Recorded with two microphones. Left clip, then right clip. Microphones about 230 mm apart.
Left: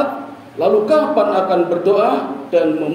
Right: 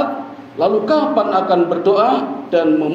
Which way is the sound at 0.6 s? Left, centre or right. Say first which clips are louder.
Left 1 dB; right.